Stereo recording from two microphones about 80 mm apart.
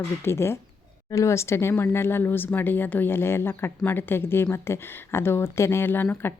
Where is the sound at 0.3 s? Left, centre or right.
Left.